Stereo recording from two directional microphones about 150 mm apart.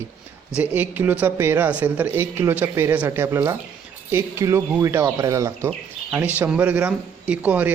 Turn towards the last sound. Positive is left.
turn(degrees=-10)  # may be behind; listen again after turning